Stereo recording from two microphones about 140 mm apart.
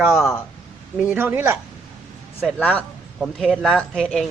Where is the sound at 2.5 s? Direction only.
10° left (ahead or behind).